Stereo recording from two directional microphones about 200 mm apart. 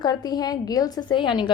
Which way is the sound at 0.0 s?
20° left (ahead or behind).